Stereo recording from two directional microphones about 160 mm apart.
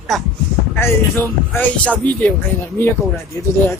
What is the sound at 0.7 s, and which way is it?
Speech, 15° left (ahead or behind).